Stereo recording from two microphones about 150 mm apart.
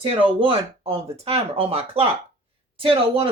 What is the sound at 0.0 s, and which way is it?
Speech, 35° right (ahead or behind).